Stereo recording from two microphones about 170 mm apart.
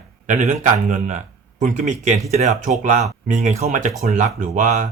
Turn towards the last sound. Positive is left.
turn(degrees=-50)  # may be behind; listen again after turning